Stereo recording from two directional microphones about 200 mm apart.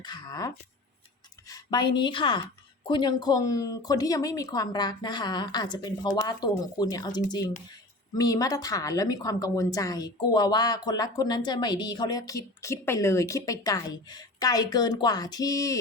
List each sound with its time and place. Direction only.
0.0 s a woman's voice: 20° left (ahead or behind)